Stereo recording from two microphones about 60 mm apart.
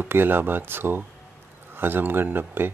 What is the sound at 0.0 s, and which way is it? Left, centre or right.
A man's voice, right.